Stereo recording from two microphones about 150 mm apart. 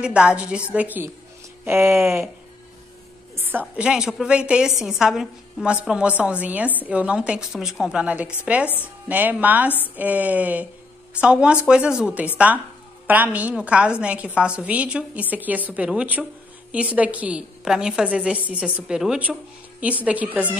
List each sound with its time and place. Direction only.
0.0 s a woman's voice: 5° right (ahead or behind)
3.3 s a woman's voice: 10° right (ahead or behind)